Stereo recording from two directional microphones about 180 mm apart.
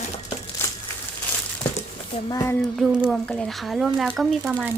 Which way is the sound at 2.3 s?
20° left (ahead or behind).